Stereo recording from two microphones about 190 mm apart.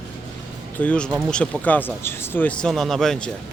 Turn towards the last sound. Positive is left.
turn(degrees=0)  # may be behind; listen again after turning